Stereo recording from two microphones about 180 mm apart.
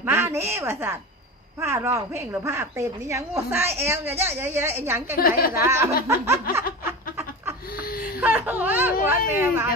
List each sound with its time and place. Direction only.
0.0 s a woman's voice: 15° right (ahead or behind)
5.2 s speech: 55° left (ahead or behind)
5.7 s a woman's voice: 15° right (ahead or behind)
6.8 s goat: 15° right (ahead or behind)
8.2 s a woman's voice: 10° right (ahead or behind)